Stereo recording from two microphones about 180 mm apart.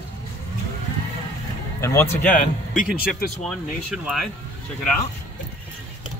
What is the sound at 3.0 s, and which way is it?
Speech, 55° left (ahead or behind).